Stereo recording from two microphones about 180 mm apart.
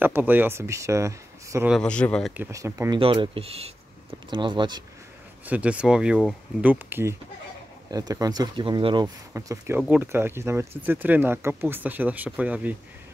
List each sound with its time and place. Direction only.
0.0 s speech: 10° right (ahead or behind)
1.7 s speech: 5° left (ahead or behind)
2.3 s speech: 15° right (ahead or behind)
3.0 s speech: 30° right (ahead or behind)
5.4 s speech: 10° right (ahead or behind)